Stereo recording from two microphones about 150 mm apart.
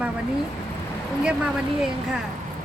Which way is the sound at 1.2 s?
5° right (ahead or behind).